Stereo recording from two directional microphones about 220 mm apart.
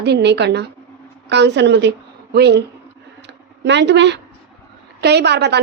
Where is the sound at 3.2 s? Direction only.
50° right (ahead or behind).